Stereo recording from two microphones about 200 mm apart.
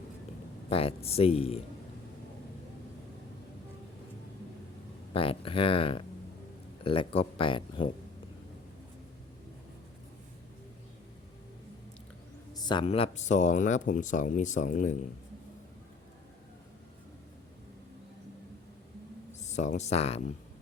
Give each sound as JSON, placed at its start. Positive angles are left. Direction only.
{"t": 0.7, "sound": "speech", "side_deg": 30}
{"t": 5.1, "sound": "speech", "side_deg": 25}
{"t": 12.5, "sound": "speech", "side_deg": 20}
{"t": 19.3, "sound": "speech", "side_deg": 35}